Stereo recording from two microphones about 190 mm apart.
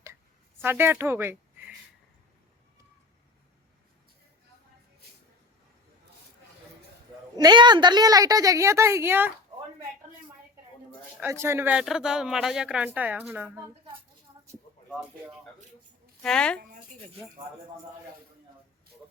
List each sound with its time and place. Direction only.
0.6 s speech: 10° right (ahead or behind)
7.3 s a woman's voice: 20° right (ahead or behind)
11.2 s a woman's voice: 15° right (ahead or behind)
16.2 s a woman's voice: 5° left (ahead or behind)